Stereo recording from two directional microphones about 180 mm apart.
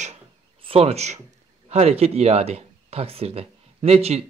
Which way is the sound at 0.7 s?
35° right (ahead or behind).